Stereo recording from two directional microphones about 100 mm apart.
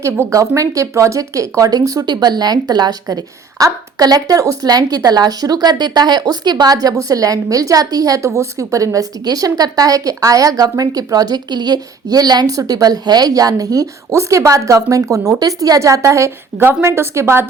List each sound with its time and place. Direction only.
0.0 s a woman's voice: 30° right (ahead or behind)